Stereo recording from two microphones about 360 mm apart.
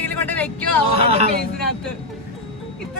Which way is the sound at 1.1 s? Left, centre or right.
Right.